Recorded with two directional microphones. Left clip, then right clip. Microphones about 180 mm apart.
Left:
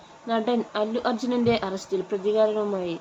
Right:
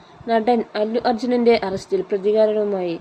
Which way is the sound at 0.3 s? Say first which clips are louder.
Right 7 dB; 20° right (ahead or behind).